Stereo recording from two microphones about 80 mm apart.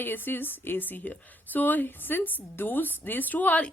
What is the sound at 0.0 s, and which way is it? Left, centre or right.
A woman's voice, left.